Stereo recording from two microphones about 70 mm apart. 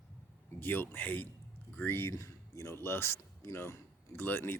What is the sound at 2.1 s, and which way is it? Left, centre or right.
Speech, left.